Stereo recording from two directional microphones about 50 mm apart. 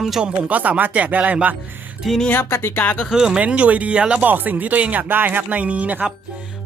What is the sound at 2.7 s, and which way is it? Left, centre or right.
Speech, left.